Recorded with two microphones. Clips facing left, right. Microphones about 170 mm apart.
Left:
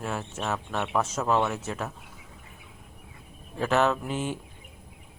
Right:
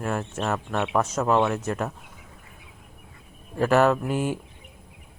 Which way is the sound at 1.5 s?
5° left (ahead or behind).